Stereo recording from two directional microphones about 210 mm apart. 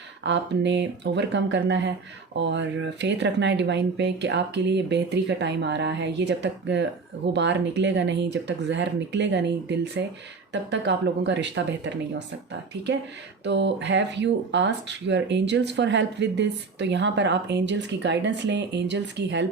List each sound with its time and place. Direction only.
0.3 s speech: 55° right (ahead or behind)
13.4 s speech: 55° right (ahead or behind)